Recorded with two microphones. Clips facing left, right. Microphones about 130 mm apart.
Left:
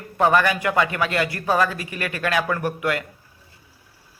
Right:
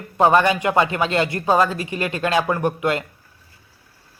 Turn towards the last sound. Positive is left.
turn(degrees=-25)  # may be behind; listen again after turning